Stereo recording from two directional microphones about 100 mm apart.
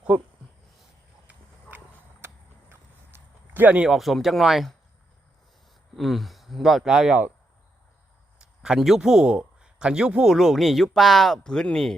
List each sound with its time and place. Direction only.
2.2 s a sound: 25° right (ahead or behind)
3.8 s a man's voice: centre (ahead or behind)
6.0 s a man's voice: centre (ahead or behind)
8.4 s a man's voice: 10° right (ahead or behind)